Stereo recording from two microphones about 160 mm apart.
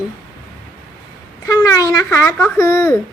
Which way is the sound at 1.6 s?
20° left (ahead or behind).